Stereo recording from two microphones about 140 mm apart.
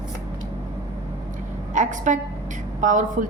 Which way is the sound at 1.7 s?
65° right (ahead or behind).